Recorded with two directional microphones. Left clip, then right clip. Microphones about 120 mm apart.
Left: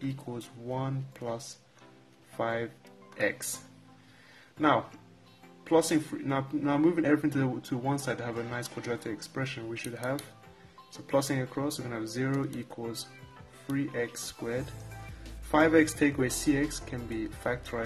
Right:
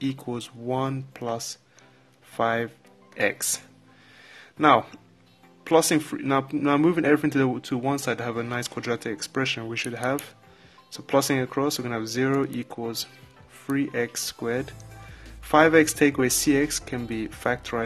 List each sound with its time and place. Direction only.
0.1 s speech: 40° right (ahead or behind)
4.6 s speech: 40° right (ahead or behind)
11.1 s speech: 40° right (ahead or behind)
13.7 s speech: 40° right (ahead or behind)
14.9 s music: centre (ahead or behind)
15.5 s speech: 35° right (ahead or behind)